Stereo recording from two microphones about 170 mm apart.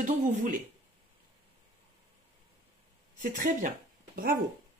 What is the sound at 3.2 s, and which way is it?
Speech, 50° right (ahead or behind).